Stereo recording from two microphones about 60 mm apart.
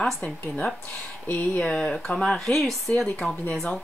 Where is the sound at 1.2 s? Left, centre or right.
Left.